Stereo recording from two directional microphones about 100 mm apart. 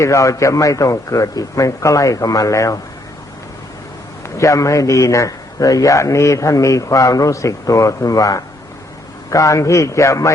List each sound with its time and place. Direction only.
0.0 s a man's voice: 30° left (ahead or behind)
4.4 s a man's voice: 35° left (ahead or behind)